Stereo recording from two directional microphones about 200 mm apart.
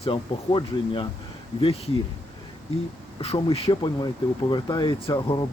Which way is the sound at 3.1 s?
30° left (ahead or behind).